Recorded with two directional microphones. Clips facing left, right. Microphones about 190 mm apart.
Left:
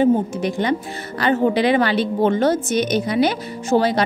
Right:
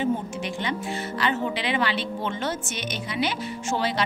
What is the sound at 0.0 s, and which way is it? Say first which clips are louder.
A woman's voice: left 9 dB; 40° left (ahead or behind).